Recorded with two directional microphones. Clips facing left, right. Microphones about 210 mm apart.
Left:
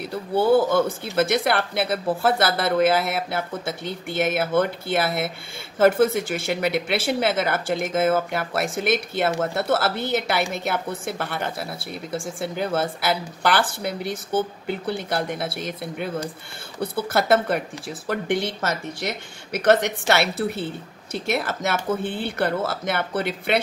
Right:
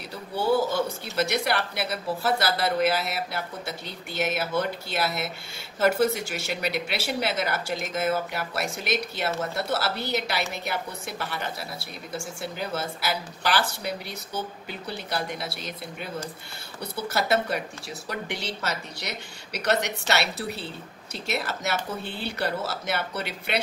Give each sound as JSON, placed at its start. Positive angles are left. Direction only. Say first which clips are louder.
{"t": 0.1, "sound": "speech", "louder": "left 6 dB", "side_deg": 55}